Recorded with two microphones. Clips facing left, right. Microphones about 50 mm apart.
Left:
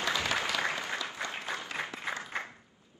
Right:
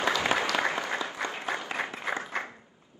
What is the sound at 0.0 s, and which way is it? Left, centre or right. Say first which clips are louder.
Applause: right 5 dB; right.